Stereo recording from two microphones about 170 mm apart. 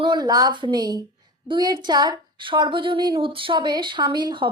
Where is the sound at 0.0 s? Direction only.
25° right (ahead or behind).